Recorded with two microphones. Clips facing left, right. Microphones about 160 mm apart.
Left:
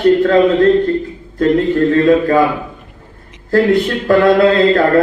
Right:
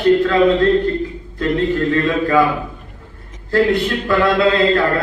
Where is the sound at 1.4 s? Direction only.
40° left (ahead or behind).